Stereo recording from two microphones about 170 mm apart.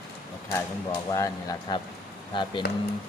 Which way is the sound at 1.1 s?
20° left (ahead or behind).